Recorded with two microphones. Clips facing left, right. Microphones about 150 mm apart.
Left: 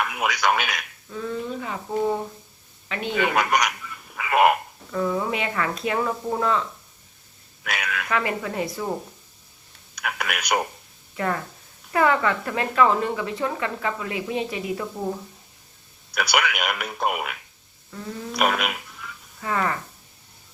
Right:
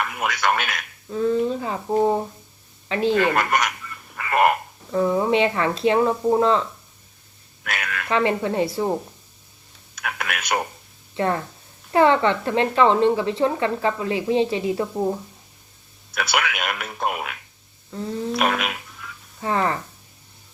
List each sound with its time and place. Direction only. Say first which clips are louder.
0.0 s speech: even; centre (ahead or behind)
1.1 s a sound: right 8 dB; 30° right (ahead or behind)
3.1 s a sound: right 2 dB; centre (ahead or behind)
4.9 s a woman's voice: right 5 dB; 30° right (ahead or behind)
7.6 s speech: even; centre (ahead or behind)
8.1 s a woman's voice: right 6 dB; 25° right (ahead or behind)
9.9 s speech: even; centre (ahead or behind)
11.1 s a woman's voice: right 4 dB; 25° right (ahead or behind)
16.1 s speech: left 1 dB; centre (ahead or behind)
19.4 s a woman's voice: right 3 dB; 30° right (ahead or behind)